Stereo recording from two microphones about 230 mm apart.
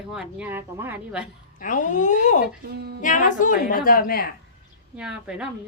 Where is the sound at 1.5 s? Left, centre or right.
Left.